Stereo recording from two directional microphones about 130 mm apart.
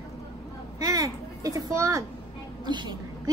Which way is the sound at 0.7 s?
25° right (ahead or behind).